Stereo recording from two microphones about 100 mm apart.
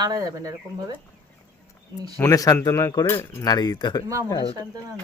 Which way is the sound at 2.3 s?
35° left (ahead or behind).